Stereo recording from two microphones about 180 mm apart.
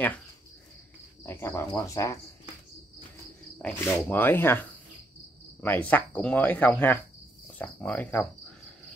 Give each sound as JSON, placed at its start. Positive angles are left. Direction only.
{"t": 1.2, "sound": "speech", "side_deg": 15}
{"t": 3.6, "sound": "speech", "side_deg": 10}